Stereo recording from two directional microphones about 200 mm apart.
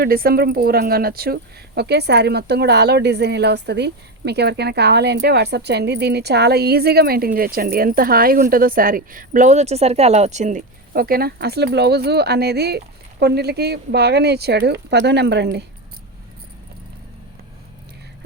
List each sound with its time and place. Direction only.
0.0 s speech: 50° right (ahead or behind)